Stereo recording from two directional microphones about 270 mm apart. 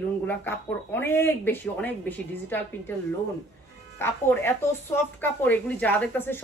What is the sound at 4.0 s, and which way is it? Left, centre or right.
Speech, centre.